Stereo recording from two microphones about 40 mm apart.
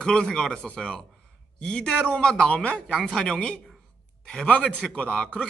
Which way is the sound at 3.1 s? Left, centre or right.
Centre.